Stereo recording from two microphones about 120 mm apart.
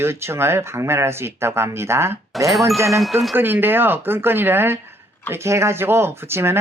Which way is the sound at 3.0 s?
Centre (ahead or behind).